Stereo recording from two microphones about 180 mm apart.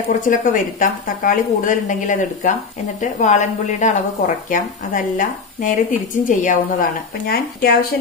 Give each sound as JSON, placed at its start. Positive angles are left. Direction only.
{"t": 0.2, "sound": "a woman's voice", "side_deg": 45}